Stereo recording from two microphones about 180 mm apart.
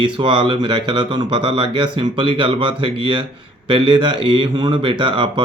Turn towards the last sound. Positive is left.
turn(degrees=-30)  # may be behind; listen again after turning